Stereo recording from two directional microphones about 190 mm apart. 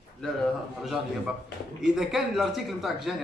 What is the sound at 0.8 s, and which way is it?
A man's voice, centre (ahead or behind).